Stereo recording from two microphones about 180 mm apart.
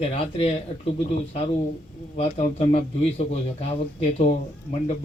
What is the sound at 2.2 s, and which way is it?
Speech, 35° left (ahead or behind).